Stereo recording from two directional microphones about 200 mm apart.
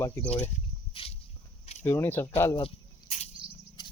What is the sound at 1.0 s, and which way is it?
Walk, 30° left (ahead or behind).